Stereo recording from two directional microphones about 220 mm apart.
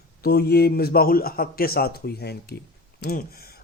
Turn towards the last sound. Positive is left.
turn(degrees=45)  # may be behind; listen again after turning